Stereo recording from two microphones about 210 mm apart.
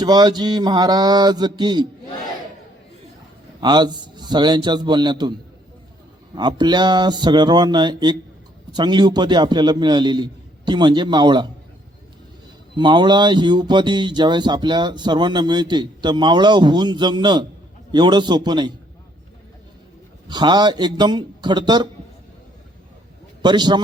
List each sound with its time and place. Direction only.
0.0 s speech: 20° right (ahead or behind)
3.6 s speech: 20° right (ahead or behind)
6.3 s speech: 20° right (ahead or behind)
12.7 s speech: 20° right (ahead or behind)
20.2 s speech: 20° right (ahead or behind)
23.4 s a man's voice: 20° right (ahead or behind)